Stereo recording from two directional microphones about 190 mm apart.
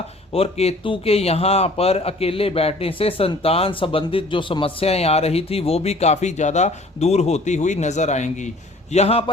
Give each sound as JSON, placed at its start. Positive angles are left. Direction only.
{"t": 0.3, "sound": "speech", "side_deg": 35}